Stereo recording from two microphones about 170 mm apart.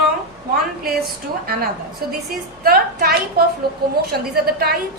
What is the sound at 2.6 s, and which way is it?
A woman's voice, 60° right (ahead or behind).